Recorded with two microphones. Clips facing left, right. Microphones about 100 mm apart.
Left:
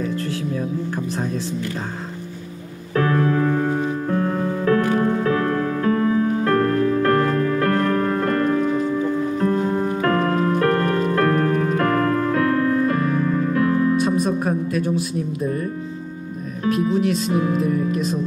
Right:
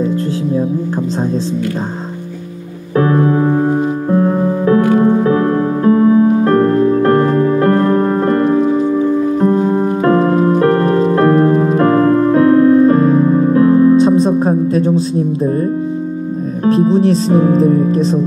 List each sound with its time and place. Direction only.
3.0 s music: 25° right (ahead or behind)
16.6 s speech: 30° right (ahead or behind)